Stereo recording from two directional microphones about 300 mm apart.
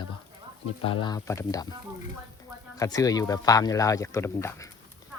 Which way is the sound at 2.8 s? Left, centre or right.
Centre.